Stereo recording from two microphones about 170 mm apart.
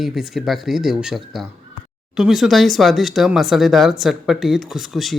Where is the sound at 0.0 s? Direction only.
Centre (ahead or behind).